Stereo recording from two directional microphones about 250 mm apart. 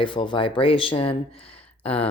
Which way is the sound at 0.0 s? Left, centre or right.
Centre.